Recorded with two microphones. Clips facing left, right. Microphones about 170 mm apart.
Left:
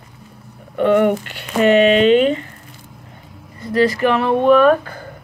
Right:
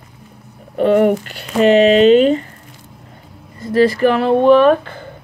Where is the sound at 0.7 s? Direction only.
40° right (ahead or behind).